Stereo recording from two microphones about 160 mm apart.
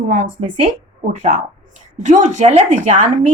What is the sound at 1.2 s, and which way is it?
A woman's voice, 50° right (ahead or behind).